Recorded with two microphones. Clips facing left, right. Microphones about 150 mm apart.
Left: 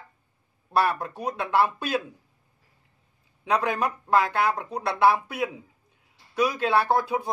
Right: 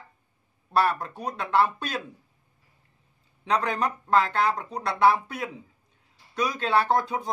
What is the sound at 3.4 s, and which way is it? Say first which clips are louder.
Speech: left 1 dB; 10° left (ahead or behind).